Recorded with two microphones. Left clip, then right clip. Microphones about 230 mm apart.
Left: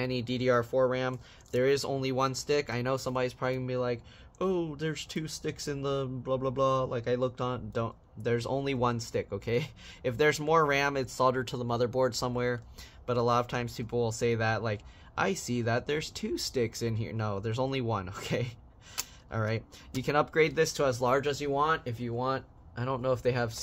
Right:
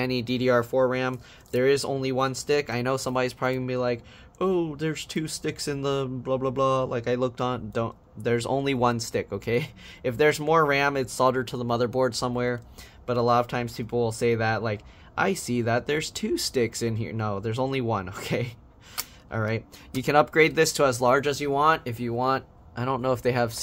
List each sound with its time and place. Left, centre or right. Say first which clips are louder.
0.0 s speech: right 5 dB; centre